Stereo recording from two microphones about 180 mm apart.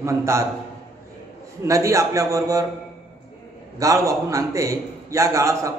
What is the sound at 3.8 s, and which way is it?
A man's voice, 20° right (ahead or behind).